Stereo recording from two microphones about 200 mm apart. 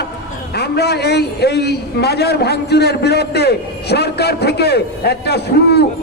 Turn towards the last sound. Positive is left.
turn(degrees=55)  # may be behind; listen again after turning